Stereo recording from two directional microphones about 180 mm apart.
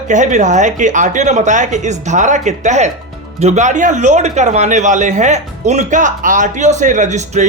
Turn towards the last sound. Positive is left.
turn(degrees=-40)  # may be behind; listen again after turning